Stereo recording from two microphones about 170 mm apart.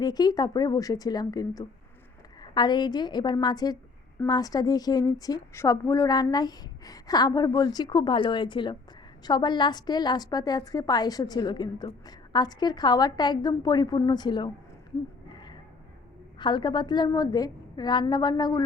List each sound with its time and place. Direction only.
0.0 s a woman's voice: 25° left (ahead or behind)
15.3 s a sound: 25° left (ahead or behind)
16.4 s a woman's voice: 25° left (ahead or behind)